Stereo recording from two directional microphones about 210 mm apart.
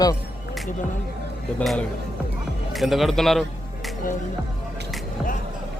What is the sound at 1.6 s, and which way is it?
Speech, centre (ahead or behind).